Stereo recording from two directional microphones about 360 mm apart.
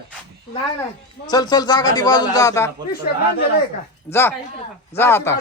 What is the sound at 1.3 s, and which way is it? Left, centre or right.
A man's voice, centre.